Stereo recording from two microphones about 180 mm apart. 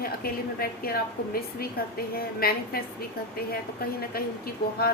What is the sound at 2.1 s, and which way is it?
Speech, 55° left (ahead or behind).